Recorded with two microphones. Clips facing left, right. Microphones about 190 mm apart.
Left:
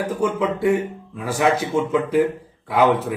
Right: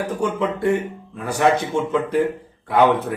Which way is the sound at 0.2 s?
Centre (ahead or behind).